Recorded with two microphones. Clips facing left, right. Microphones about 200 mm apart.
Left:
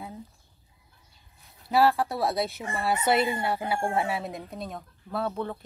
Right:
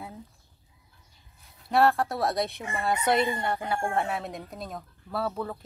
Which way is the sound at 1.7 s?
Centre (ahead or behind).